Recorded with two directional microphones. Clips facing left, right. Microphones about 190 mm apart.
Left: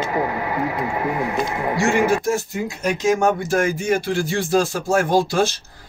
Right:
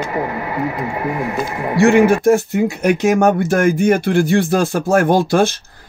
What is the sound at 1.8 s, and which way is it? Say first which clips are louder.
Speech: right 8 dB; 60° right (ahead or behind).